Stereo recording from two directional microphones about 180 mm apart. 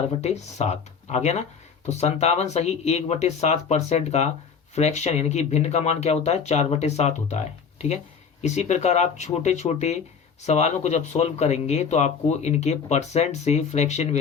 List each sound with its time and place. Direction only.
0.2 s speech: 35° left (ahead or behind)